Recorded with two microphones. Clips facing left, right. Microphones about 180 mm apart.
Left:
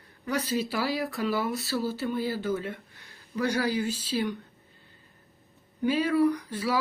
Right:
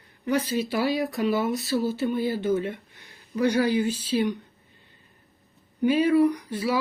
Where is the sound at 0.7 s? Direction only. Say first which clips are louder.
Right 4 dB; 20° right (ahead or behind).